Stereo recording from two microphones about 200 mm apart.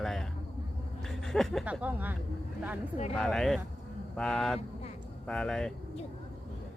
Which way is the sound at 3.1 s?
5° left (ahead or behind).